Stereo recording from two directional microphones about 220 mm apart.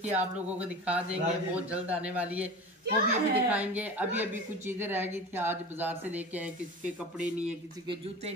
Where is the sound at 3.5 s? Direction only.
5° right (ahead or behind).